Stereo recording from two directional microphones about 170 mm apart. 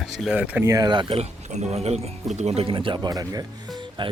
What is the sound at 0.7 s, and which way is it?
Speech, 25° right (ahead or behind).